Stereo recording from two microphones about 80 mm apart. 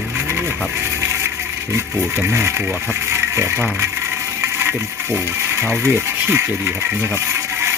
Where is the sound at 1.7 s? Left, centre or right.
Right.